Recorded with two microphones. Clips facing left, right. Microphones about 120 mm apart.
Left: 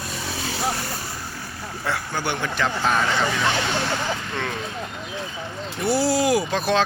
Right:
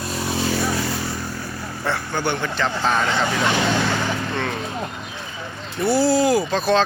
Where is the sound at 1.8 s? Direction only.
5° left (ahead or behind).